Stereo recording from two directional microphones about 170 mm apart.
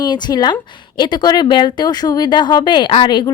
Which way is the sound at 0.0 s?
25° left (ahead or behind).